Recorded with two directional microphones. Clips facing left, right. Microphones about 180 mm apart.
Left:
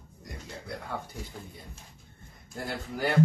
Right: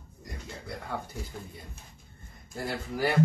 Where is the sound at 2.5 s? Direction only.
Centre (ahead or behind).